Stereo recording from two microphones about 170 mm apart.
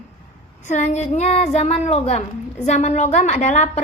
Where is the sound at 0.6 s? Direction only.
45° left (ahead or behind).